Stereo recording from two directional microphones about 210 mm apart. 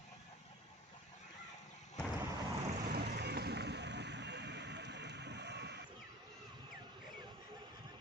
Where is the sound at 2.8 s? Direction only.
50° right (ahead or behind).